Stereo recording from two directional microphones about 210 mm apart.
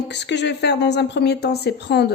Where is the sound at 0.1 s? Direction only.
55° left (ahead or behind).